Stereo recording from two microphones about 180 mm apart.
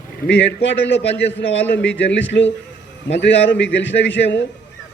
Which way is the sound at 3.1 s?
80° left.